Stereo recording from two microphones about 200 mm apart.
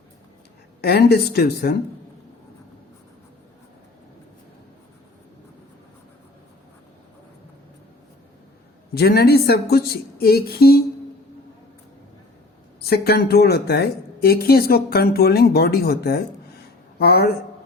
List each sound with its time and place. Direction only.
0.8 s a woman's voice: 55° left (ahead or behind)
9.0 s a woman's voice: 50° left (ahead or behind)
12.8 s a woman's voice: 50° left (ahead or behind)